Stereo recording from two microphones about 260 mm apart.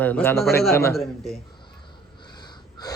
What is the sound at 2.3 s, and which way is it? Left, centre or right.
Wheeze, centre.